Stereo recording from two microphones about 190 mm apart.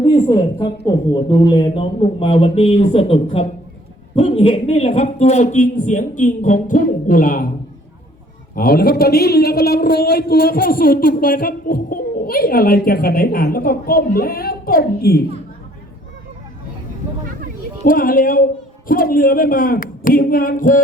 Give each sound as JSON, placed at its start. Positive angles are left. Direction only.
{"t": 0.0, "sound": "speech", "side_deg": 30}
{"t": 8.5, "sound": "speech", "side_deg": 50}
{"t": 17.8, "sound": "speech", "side_deg": 45}